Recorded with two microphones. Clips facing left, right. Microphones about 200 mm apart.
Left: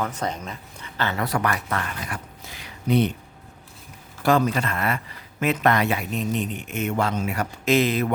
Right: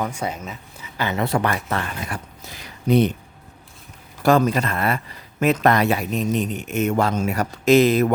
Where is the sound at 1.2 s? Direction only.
25° right (ahead or behind); by 3.1 s 45° right (ahead or behind).